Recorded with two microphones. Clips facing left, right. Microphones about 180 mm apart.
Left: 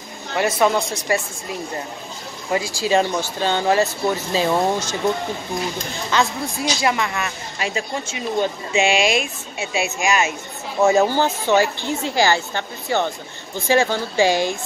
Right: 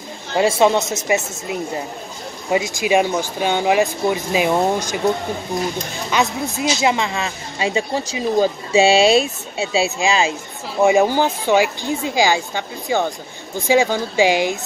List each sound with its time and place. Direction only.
0.3 s speech: 25° right (ahead or behind)
6.0 s speech: 20° right (ahead or behind)
10.8 s speech: 15° right (ahead or behind)